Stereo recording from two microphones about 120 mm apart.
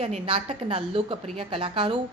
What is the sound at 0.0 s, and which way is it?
A woman's voice, 55° right (ahead or behind).